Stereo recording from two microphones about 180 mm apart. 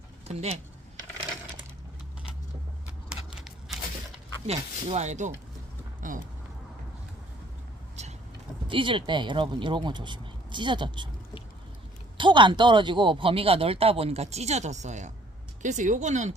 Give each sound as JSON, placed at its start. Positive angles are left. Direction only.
{"t": 0.3, "sound": "speech", "side_deg": -35}
{"t": 4.4, "sound": "speech", "side_deg": -40}
{"t": 8.0, "sound": "vehicle", "side_deg": -40}
{"t": 8.6, "sound": "speech", "side_deg": -30}
{"t": 12.1, "sound": "speech", "side_deg": -25}